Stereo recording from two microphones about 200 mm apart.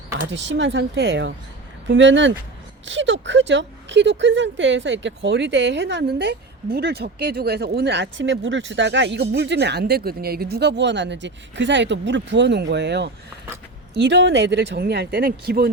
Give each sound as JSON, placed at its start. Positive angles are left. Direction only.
{"t": 0.3, "sound": "speech", "side_deg": -65}